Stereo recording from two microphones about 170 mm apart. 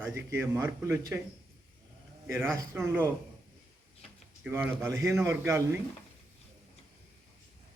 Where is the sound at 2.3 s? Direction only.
15° right (ahead or behind).